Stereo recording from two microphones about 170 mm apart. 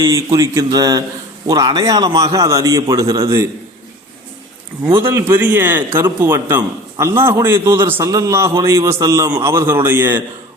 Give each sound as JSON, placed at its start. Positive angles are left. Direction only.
{"t": 0.0, "sound": "a man's voice", "side_deg": -20}
{"t": 4.9, "sound": "a man's voice", "side_deg": -15}